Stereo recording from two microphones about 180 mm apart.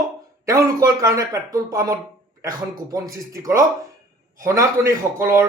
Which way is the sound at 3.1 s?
15° right (ahead or behind).